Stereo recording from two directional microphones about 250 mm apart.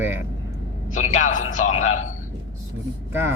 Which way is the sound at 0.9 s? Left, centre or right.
Left.